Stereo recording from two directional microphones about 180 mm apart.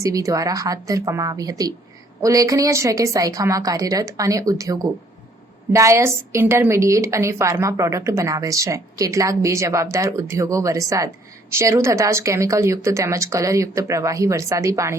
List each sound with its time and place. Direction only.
0.0 s a woman's voice: 20° right (ahead or behind)